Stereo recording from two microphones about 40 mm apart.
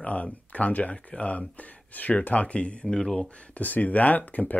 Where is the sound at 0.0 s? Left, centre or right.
Left.